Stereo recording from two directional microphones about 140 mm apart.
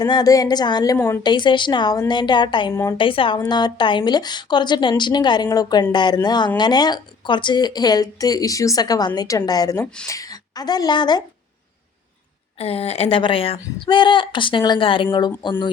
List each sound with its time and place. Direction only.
0.0 s speech: 30° left (ahead or behind)
0.9 s speech: 20° left (ahead or behind)
1.2 s speech: 35° left (ahead or behind)
9.8 s speech: 5° left (ahead or behind)
10.1 s speech: 25° left (ahead or behind)
12.5 s speech: 45° left (ahead or behind)